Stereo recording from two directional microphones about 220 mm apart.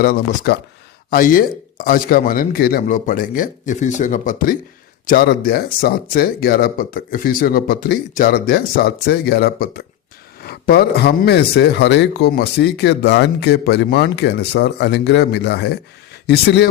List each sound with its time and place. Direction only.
0.0 s a man's voice: 45° left (ahead or behind)